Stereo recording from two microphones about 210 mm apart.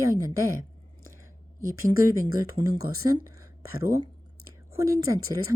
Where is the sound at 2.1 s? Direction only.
20° right (ahead or behind).